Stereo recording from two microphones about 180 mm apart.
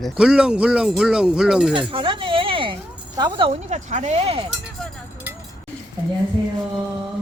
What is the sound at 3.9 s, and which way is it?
Speech, 40° right (ahead or behind).